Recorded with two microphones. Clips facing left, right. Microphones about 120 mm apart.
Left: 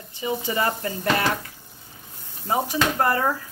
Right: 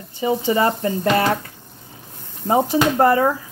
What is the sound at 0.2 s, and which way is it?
Speech, 30° right (ahead or behind).